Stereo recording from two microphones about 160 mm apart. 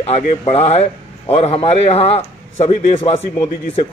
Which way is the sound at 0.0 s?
40° left (ahead or behind).